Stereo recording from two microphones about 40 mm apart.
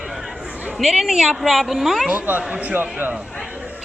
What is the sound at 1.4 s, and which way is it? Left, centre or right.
Speech, centre.